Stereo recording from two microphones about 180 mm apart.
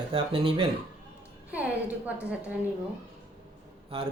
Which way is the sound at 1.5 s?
10° right (ahead or behind).